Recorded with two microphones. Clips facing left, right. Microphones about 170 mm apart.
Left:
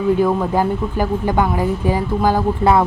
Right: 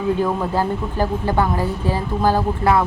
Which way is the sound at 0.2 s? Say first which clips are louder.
Left 4 dB; 15° left (ahead or behind).